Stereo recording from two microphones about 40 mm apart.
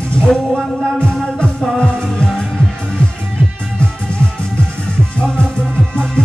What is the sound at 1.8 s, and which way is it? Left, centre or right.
Music, left.